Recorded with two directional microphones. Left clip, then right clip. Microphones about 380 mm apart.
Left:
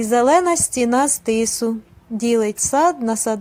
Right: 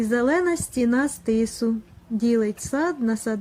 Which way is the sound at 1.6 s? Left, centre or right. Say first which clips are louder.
Left 4 dB; left.